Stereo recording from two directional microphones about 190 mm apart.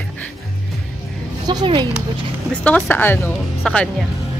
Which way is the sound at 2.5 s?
5° left (ahead or behind).